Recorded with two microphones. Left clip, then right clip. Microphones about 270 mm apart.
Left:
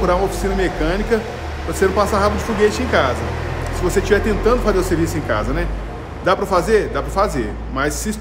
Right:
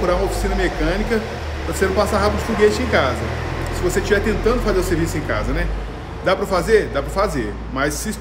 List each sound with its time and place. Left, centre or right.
0.0 s a man's voice: centre